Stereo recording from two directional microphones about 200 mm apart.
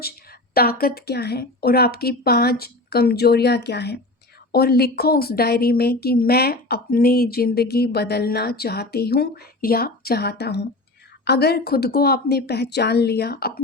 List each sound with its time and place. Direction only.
0.5 s a woman's voice: 50° left (ahead or behind)